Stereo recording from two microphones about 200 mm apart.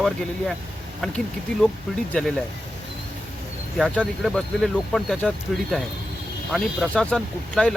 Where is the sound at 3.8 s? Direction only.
Centre (ahead or behind).